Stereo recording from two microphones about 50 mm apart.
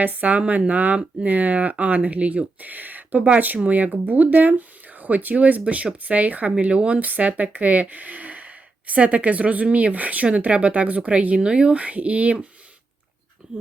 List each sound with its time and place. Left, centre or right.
0.0 s speech: right